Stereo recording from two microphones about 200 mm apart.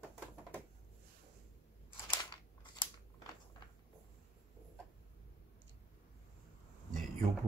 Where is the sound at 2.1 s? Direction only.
20° left (ahead or behind).